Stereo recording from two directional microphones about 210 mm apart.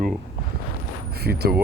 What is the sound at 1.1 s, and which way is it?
Speech, 50° right (ahead or behind).